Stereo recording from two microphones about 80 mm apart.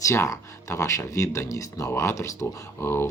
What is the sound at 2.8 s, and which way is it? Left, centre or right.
Speech, left.